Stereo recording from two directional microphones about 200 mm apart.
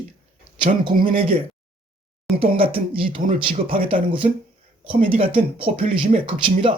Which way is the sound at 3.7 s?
25° right (ahead or behind).